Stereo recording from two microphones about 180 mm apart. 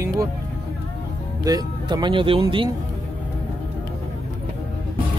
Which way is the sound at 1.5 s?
20° right (ahead or behind).